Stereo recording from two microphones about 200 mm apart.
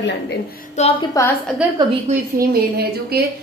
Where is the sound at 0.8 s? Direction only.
35° left (ahead or behind).